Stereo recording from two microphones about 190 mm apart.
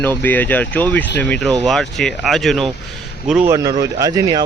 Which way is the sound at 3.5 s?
20° right (ahead or behind).